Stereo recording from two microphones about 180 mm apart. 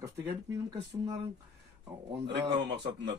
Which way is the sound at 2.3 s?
75° right (ahead or behind).